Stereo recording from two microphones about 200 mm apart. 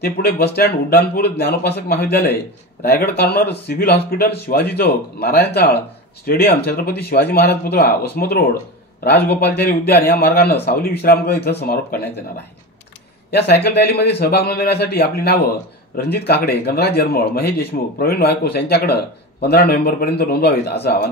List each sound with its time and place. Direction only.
0.0 s speech: 50° left (ahead or behind)
13.3 s speech: 55° left (ahead or behind)